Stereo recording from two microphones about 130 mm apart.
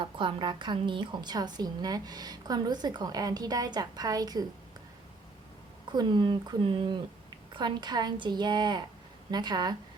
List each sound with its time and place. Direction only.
0.0 s a woman's voice: 40° right (ahead or behind)
5.9 s a woman's voice: 35° right (ahead or behind)